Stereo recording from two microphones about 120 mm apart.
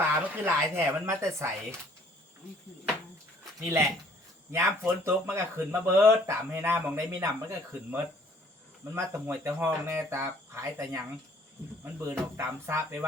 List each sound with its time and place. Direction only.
0.0 s speech: 20° right (ahead or behind)
4.5 s speech: 20° right (ahead or behind)